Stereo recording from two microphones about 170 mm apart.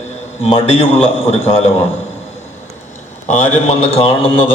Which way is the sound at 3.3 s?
35° left (ahead or behind).